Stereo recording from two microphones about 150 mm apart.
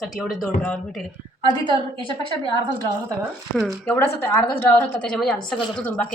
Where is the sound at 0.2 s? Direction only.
Centre (ahead or behind).